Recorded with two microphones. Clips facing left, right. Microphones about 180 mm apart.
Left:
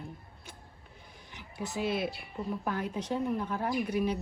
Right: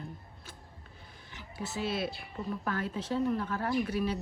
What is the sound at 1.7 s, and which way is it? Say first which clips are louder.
Speech: left 2 dB; 15° left (ahead or behind).